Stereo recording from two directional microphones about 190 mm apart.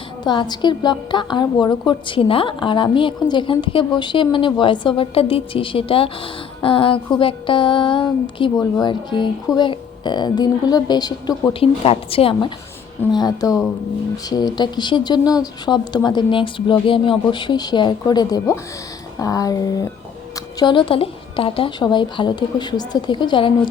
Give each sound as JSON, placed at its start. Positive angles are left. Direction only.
{"t": 0.3, "sound": "a woman's voice", "side_deg": 20}